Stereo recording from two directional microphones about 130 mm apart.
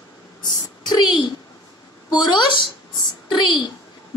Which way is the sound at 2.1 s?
30° left (ahead or behind).